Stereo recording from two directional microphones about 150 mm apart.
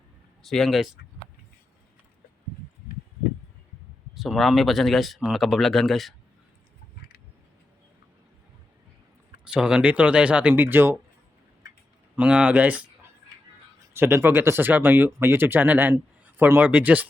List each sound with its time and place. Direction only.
0.4 s speech: centre (ahead or behind)
4.1 s speech: centre (ahead or behind)
9.4 s speech: 5° right (ahead or behind)
12.1 s speech: 10° right (ahead or behind)